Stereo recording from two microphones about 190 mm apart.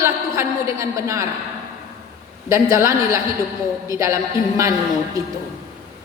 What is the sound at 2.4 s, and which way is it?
A woman's voice, 15° right (ahead or behind).